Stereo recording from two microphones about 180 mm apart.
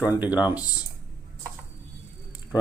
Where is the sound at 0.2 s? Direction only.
10° right (ahead or behind).